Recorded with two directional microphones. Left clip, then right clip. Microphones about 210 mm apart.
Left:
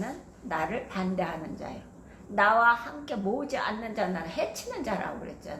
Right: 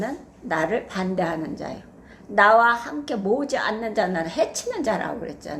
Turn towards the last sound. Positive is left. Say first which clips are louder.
# right 6 dB
turn(degrees=-45)  # may be behind; listen again after turning